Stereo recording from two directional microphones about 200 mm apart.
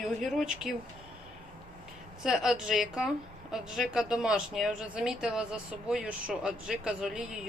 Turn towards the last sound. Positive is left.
turn(degrees=-5)  # may be behind; listen again after turning